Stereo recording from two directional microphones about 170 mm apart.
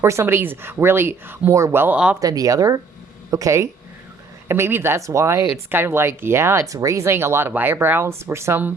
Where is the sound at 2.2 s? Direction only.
20° right (ahead or behind).